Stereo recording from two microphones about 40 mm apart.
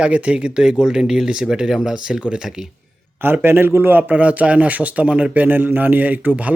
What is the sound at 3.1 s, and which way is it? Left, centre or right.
Speech, right.